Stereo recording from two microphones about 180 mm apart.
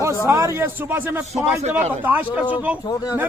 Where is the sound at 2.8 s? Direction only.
20° left (ahead or behind).